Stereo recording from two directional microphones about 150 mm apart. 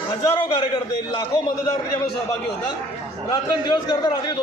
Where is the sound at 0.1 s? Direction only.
30° left (ahead or behind).